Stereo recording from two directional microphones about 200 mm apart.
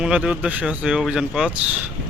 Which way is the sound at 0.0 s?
5° right (ahead or behind).